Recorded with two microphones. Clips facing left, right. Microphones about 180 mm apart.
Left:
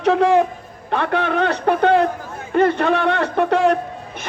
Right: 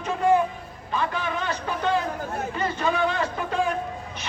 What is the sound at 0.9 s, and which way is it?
A man's voice, 65° left (ahead or behind).